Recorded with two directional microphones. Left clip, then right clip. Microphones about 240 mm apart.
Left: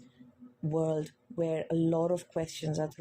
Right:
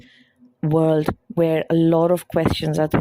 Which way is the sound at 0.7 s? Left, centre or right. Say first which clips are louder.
Right 13 dB; right.